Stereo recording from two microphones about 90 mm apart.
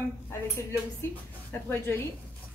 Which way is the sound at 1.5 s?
25° left (ahead or behind).